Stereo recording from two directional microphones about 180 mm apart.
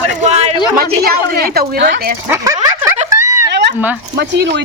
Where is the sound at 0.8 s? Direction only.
60° right (ahead or behind).